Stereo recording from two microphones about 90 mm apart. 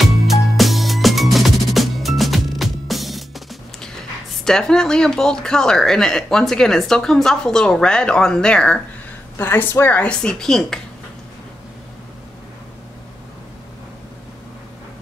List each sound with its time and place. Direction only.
0.0 s music: centre (ahead or behind)
9.4 s speech: 25° left (ahead or behind); by 10.8 s 5° left (ahead or behind)